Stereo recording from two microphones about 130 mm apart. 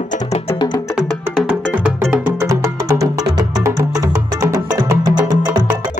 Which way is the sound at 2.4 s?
25° right (ahead or behind).